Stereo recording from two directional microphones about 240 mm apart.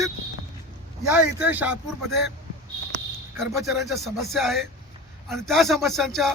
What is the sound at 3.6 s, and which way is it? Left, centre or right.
Speech, centre.